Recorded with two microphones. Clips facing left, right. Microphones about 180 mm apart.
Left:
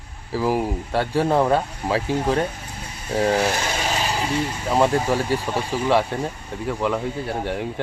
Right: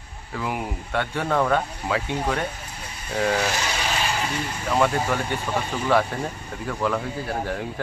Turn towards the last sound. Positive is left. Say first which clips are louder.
# left 2 dB
turn(degrees=25)  # may be behind; listen again after turning